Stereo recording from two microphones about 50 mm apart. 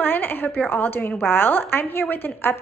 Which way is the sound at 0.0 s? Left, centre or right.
Left.